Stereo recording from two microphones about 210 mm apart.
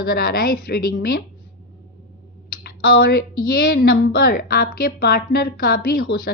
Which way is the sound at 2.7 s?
45° left (ahead or behind).